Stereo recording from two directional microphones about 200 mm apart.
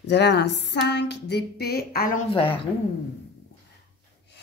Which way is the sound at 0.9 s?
60° left (ahead or behind).